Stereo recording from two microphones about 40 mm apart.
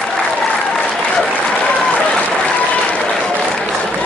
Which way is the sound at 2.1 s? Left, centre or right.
Left.